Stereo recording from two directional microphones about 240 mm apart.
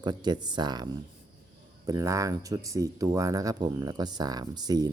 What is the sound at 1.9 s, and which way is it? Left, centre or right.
Speech, centre.